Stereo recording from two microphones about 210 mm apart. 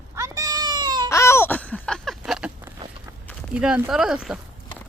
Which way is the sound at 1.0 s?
15° left (ahead or behind).